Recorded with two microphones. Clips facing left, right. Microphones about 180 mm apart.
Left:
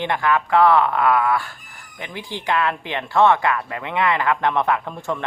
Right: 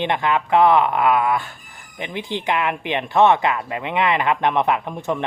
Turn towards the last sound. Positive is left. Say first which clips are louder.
# right 1 dB
turn(degrees=-20)  # may be behind; listen again after turning